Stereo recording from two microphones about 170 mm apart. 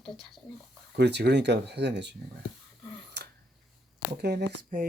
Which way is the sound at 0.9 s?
80° right.